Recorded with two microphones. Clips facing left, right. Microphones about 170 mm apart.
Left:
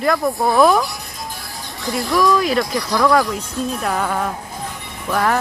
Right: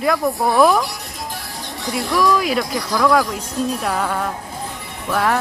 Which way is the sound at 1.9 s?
5° right (ahead or behind).